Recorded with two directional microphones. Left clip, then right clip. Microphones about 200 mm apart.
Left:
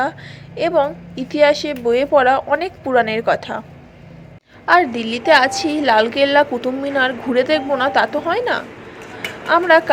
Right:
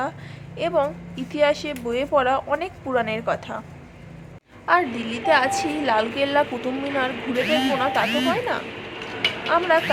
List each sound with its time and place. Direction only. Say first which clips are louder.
0.5 s speech: left 6 dB; 20° left (ahead or behind)
4.6 s speech: left 6 dB; 20° left (ahead or behind)